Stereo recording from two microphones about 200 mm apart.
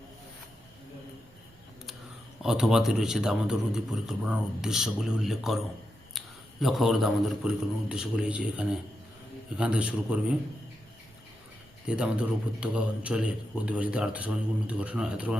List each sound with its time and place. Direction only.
2.4 s a man's voice: centre (ahead or behind)
11.9 s a man's voice: 5° right (ahead or behind)